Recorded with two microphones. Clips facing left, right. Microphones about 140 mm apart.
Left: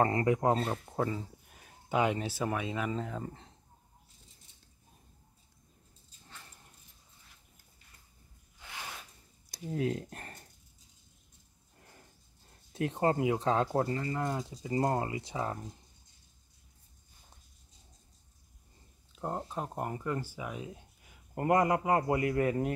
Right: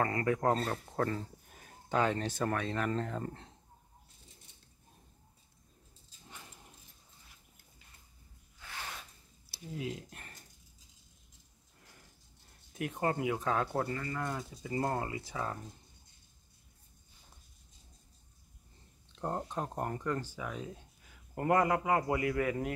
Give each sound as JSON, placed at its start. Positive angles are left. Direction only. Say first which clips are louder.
{"t": 0.0, "sound": "speech", "louder": "left 3 dB", "side_deg": 25}
{"t": 8.5, "sound": "a sound", "louder": "even", "side_deg": 15}
{"t": 9.5, "sound": "speech", "louder": "left 7 dB", "side_deg": 45}
{"t": 12.7, "sound": "speech", "louder": "left 4 dB", "side_deg": 30}
{"t": 19.1, "sound": "speech", "louder": "even", "side_deg": 5}